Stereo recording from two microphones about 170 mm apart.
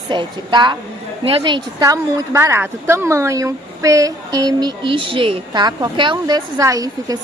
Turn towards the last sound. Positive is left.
turn(degrees=-20)  # may be behind; listen again after turning